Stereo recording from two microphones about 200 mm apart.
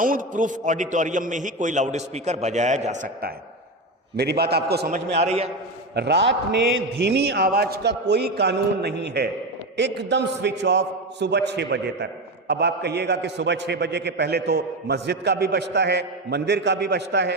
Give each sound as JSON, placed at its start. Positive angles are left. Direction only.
{"t": 0.0, "sound": "a man's voice", "side_deg": -40}
{"t": 5.1, "sound": "a man's voice", "side_deg": -30}
{"t": 5.9, "sound": "a man's voice", "side_deg": -55}